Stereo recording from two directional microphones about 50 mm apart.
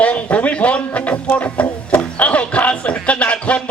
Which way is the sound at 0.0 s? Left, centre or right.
Left.